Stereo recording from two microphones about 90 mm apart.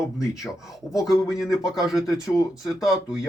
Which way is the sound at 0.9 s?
40° left (ahead or behind).